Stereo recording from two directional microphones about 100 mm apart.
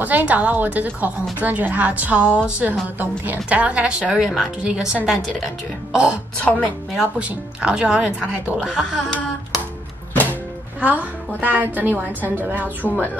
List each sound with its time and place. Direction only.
0.0 s a woman's voice: 15° right (ahead or behind)
6.4 s speech: 15° left (ahead or behind)
7.0 s a woman's voice: 10° right (ahead or behind)
8.7 s a woman's voice: 5° left (ahead or behind)
10.8 s a woman's voice: 15° right (ahead or behind)
12.8 s speech: 15° left (ahead or behind)